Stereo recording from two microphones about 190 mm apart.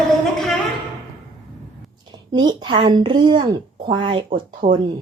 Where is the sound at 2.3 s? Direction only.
25° right (ahead or behind).